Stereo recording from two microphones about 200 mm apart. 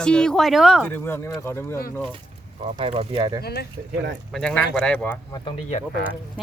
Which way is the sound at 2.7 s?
30° right (ahead or behind).